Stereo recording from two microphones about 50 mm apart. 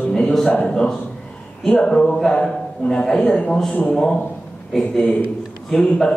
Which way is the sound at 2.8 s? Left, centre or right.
Centre.